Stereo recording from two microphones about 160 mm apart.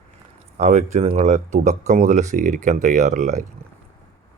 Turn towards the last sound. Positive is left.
turn(degrees=-50)  # may be behind; listen again after turning